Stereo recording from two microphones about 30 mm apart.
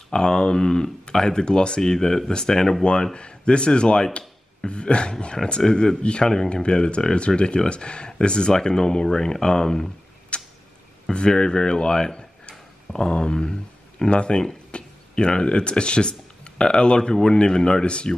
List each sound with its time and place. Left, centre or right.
0.1 s speech: left
10.3 s tick-tock: left
11.1 s speech: left
17.1 s speech: centre
17.8 s speech: left